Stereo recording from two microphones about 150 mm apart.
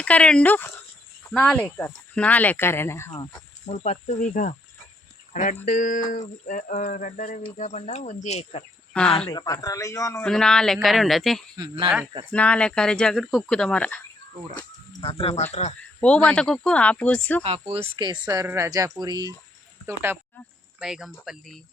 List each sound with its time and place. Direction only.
0.0 s speech: 5° left (ahead or behind)
3.7 s speech: 45° left (ahead or behind)
8.9 s speech: 5° left (ahead or behind)
9.1 s speech: 30° left (ahead or behind)
10.2 s speech: 5° left (ahead or behind)
11.5 s speech: 25° right (ahead or behind)
12.3 s speech: 10° left (ahead or behind)
15.0 s speech: 40° left (ahead or behind)
16.0 s speech: 5° left (ahead or behind)
17.4 s speech: 40° right (ahead or behind)
20.7 s speech: 5° right (ahead or behind)